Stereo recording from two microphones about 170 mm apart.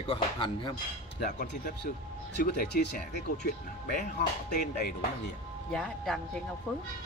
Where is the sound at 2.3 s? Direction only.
75° left (ahead or behind).